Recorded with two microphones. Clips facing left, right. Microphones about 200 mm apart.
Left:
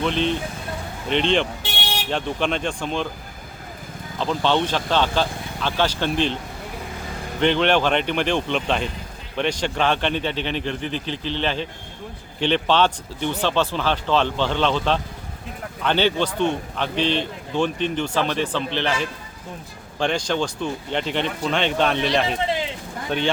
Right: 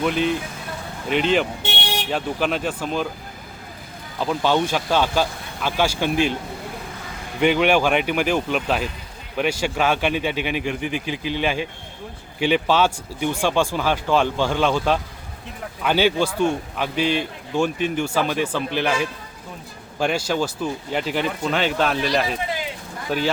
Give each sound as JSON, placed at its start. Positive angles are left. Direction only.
{"t": 0.0, "sound": "speech", "side_deg": -10}
{"t": 4.2, "sound": "speech", "side_deg": -10}
{"t": 7.3, "sound": "speech", "side_deg": -10}